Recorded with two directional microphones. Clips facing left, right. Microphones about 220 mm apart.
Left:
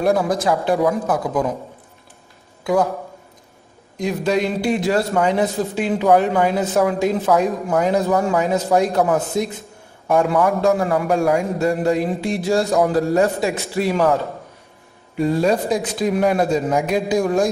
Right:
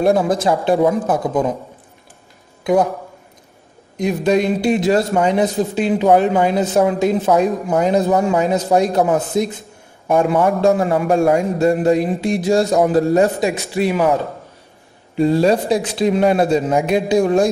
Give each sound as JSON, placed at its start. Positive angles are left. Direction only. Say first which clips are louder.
{"t": 0.0, "sound": "a man's voice", "louder": "right 3 dB", "side_deg": -30}
{"t": 2.6, "sound": "a man's voice", "louder": "right 3 dB", "side_deg": -20}
{"t": 4.0, "sound": "a man's voice", "louder": "right 3 dB", "side_deg": -20}
{"t": 15.1, "sound": "a man's voice", "louder": "right 3 dB", "side_deg": -30}